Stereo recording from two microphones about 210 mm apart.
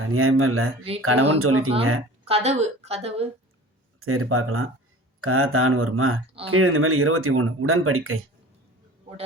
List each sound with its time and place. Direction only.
0.0 s speech: 90° right
2.2 s a woman's voice: 30° right (ahead or behind)
4.0 s speech: 90° right